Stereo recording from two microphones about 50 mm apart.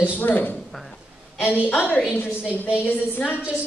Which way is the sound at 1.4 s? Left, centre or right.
Right.